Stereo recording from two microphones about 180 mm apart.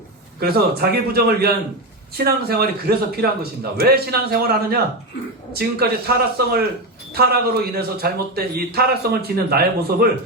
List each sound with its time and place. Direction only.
0.3 s speech: 60° right (ahead or behind)